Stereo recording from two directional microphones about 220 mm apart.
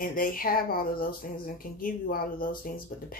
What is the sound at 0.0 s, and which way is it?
Speech, 40° left (ahead or behind).